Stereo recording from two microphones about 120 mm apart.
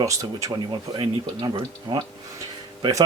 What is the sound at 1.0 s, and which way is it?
Speech, 40° right (ahead or behind).